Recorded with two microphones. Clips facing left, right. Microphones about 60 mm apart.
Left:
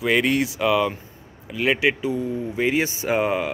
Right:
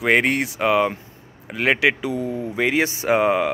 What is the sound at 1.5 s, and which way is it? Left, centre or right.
Speech, right.